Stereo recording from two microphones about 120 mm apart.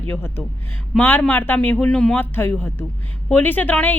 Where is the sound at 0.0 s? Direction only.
20° left (ahead or behind).